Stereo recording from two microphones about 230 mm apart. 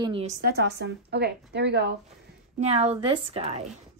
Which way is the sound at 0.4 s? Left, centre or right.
Right.